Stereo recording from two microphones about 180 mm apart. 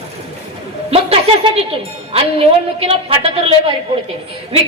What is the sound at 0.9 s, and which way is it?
A woman's voice, 35° right (ahead or behind).